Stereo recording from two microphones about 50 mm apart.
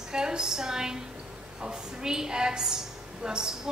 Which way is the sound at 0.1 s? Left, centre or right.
Centre.